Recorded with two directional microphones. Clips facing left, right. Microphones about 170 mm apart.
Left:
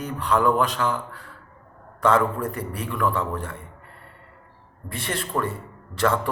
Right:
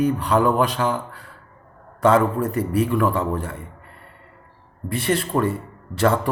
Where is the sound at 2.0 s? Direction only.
10° right (ahead or behind).